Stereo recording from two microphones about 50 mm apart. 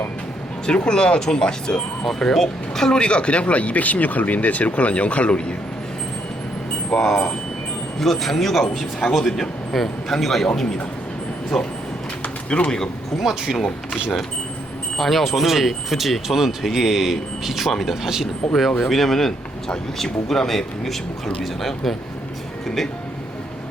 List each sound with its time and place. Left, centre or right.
0.7 s speech: centre
7.0 s speech: centre
11.5 s speech: centre
12.2 s bird: left
13.1 s speech: centre
13.6 s speech: left
14.9 s speech: centre
18.8 s speech: centre